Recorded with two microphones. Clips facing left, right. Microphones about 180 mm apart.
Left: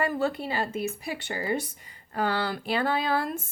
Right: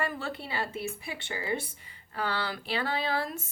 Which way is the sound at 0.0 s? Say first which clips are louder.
Left 7 dB; 40° left (ahead or behind).